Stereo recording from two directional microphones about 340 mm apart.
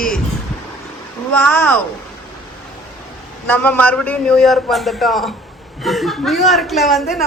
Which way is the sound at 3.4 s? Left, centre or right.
Centre.